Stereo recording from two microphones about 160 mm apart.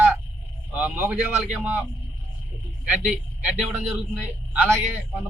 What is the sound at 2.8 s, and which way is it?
A man's voice, 5° right (ahead or behind).